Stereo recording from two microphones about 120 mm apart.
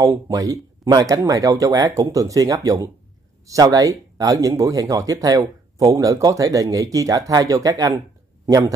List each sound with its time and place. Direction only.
0.0 s a man's voice: 30° right (ahead or behind)